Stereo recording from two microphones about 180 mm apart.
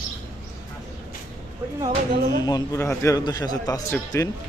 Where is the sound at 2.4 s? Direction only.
20° left (ahead or behind).